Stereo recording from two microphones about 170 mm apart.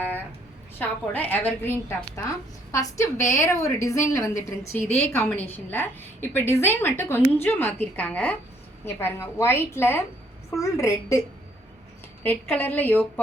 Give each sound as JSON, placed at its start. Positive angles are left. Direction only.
{"t": 0.8, "sound": "a woman's voice", "side_deg": 10}
{"t": 12.2, "sound": "a woman's voice", "side_deg": 10}